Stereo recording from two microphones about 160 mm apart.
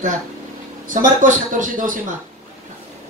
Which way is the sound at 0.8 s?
55° right (ahead or behind).